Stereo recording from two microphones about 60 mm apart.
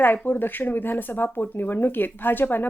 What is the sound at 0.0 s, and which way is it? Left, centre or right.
Speech, left.